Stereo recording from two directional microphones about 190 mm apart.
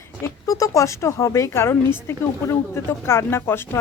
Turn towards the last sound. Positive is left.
turn(degrees=10)  # may be behind; listen again after turning